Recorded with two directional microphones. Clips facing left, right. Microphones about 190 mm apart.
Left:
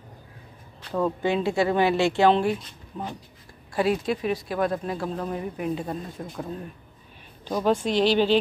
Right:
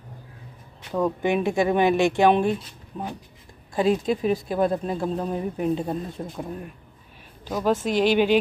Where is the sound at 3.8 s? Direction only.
5° left (ahead or behind).